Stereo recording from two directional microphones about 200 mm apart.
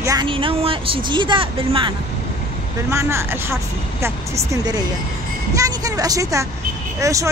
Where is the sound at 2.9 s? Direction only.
15° right (ahead or behind).